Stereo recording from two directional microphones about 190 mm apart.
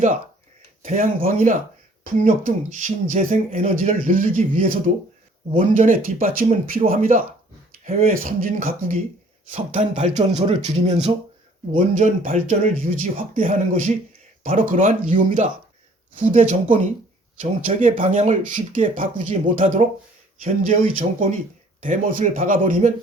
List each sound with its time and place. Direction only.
0.9 s speech: 45° right (ahead or behind)